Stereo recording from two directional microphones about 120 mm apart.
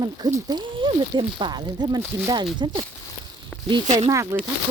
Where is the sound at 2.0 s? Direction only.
15° right (ahead or behind).